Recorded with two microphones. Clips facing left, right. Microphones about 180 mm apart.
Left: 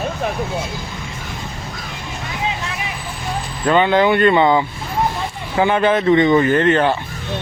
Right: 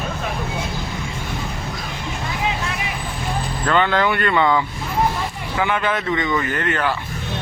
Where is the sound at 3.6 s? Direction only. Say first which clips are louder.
Left 5 dB; 20° left (ahead or behind).